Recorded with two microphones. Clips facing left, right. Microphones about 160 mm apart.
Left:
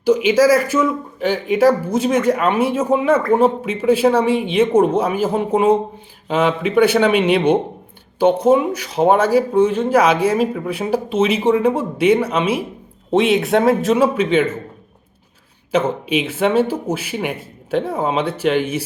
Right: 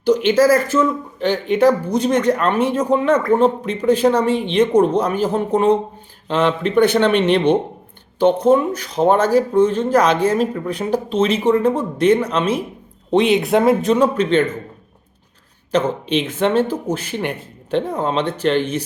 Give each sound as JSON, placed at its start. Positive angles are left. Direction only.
{"t": 0.0, "sound": "a man's voice", "side_deg": 5}
{"t": 15.7, "sound": "speech", "side_deg": 10}